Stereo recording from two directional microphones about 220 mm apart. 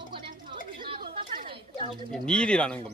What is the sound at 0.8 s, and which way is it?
Chatter, 25° right (ahead or behind).